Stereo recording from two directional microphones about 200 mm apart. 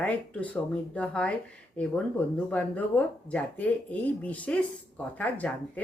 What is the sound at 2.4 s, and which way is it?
Speech, 5° left (ahead or behind).